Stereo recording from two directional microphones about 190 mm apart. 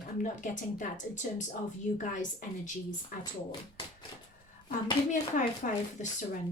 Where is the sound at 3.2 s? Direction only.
25° left (ahead or behind).